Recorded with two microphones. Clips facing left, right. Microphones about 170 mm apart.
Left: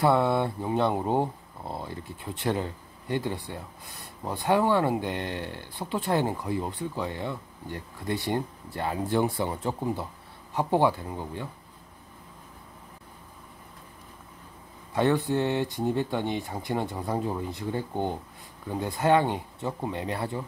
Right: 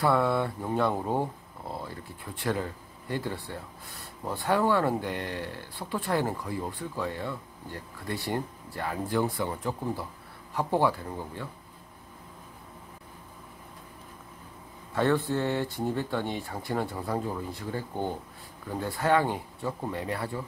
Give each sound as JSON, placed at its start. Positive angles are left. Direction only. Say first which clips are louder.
{"t": 0.0, "sound": "speech", "louder": "left 2 dB", "side_deg": 25}
{"t": 15.0, "sound": "speech", "louder": "left 2 dB", "side_deg": 15}